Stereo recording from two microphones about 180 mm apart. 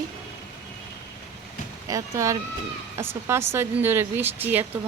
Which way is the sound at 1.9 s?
20° right (ahead or behind).